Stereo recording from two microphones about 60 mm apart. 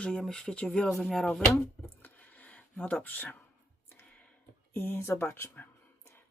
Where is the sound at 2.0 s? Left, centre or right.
Left.